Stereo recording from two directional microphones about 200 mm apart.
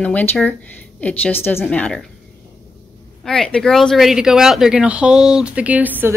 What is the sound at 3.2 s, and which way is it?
Speech, 5° left (ahead or behind).